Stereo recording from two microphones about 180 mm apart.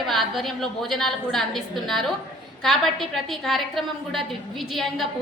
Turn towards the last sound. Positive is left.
turn(degrees=0)  # may be behind; listen again after turning